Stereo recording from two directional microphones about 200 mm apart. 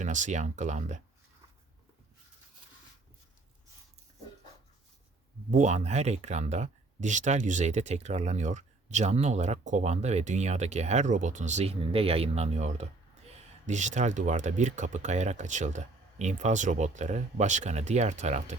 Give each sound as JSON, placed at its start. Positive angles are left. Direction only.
{"t": 0.0, "sound": "speech", "side_deg": -40}
{"t": 5.5, "sound": "speech", "side_deg": -35}